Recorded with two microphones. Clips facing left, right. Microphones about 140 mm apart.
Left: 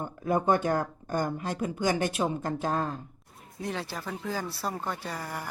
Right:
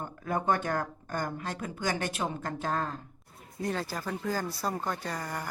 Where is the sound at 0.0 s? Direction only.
15° left (ahead or behind).